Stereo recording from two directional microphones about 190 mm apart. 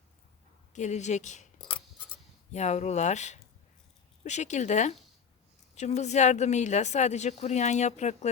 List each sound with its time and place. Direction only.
0.7 s speech: 40° left (ahead or behind)
1.5 s a sound: 25° left (ahead or behind)
2.5 s speech: 35° left (ahead or behind)